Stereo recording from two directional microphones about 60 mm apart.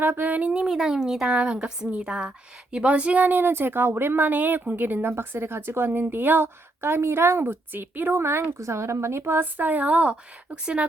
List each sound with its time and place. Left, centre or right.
0.0 s a woman's voice: right
8.1 s a woman's voice: right; by 10.8 s centre